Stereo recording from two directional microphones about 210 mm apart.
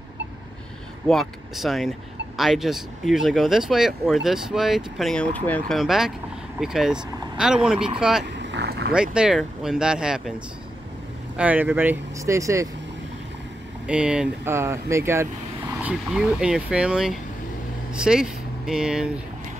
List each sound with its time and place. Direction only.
1.0 s speech: centre (ahead or behind)
8.3 s vehicle: 55° right (ahead or behind)
8.9 s speech: 5° right (ahead or behind)
11.3 s speech: 5° right (ahead or behind)
13.8 s speech: 5° right (ahead or behind)